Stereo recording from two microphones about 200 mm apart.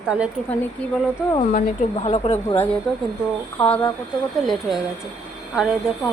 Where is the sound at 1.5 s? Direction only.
35° left (ahead or behind).